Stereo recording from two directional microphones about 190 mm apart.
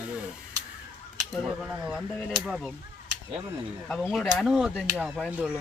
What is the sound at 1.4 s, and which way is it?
Speech, centre (ahead or behind).